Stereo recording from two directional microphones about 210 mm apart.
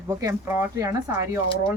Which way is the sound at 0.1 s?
15° right (ahead or behind).